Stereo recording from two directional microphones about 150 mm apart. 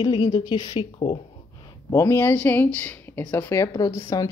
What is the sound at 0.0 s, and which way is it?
A woman's voice, 30° left (ahead or behind).